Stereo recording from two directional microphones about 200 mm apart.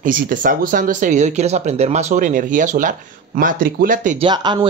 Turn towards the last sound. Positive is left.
turn(degrees=-20)  # may be behind; listen again after turning